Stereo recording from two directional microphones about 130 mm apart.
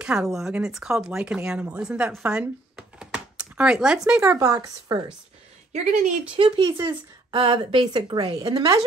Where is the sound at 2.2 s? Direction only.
10° right (ahead or behind).